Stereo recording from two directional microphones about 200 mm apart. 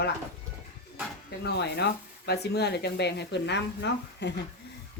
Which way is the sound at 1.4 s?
55° left (ahead or behind).